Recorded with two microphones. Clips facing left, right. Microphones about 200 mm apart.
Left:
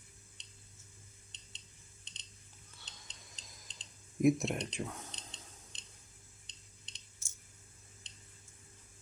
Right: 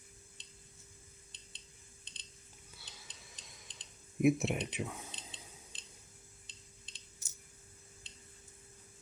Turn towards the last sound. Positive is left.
turn(degrees=25)  # may be behind; listen again after turning